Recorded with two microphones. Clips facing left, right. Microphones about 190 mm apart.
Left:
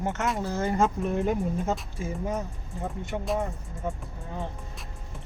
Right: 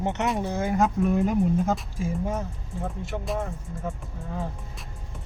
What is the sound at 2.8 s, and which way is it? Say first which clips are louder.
Speech: even; 5° right (ahead or behind).